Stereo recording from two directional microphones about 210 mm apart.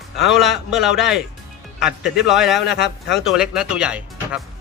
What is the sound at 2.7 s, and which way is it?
Speech, 55° left (ahead or behind).